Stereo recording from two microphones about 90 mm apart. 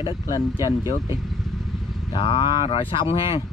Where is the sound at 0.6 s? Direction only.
45° left (ahead or behind).